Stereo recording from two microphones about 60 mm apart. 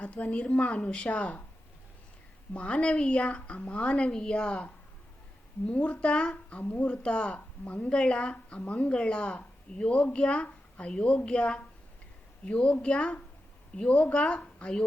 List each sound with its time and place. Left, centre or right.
0.0 s a woman's voice: left
2.5 s a woman's voice: left
5.7 s a woman's voice: left